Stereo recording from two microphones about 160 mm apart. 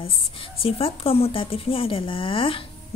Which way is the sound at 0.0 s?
35° left (ahead or behind).